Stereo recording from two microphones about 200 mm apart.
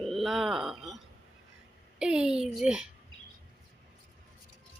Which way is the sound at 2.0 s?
5° right (ahead or behind).